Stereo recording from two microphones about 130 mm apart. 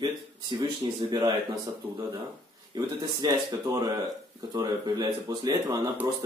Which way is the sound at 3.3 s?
30° right (ahead or behind).